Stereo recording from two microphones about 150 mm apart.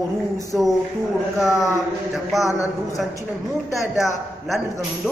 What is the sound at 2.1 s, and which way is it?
Speech, centre (ahead or behind).